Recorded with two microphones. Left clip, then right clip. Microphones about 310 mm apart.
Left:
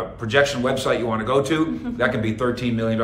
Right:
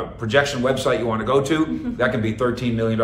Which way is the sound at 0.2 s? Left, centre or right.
Centre.